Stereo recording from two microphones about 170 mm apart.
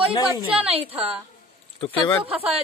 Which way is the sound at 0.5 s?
35° right (ahead or behind).